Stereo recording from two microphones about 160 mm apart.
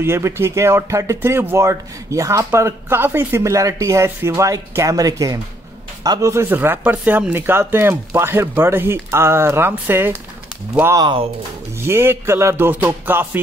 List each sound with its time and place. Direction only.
0.0 s speech: 15° right (ahead or behind)
11.0 s speech: 30° right (ahead or behind)
11.8 s speech: 15° right (ahead or behind)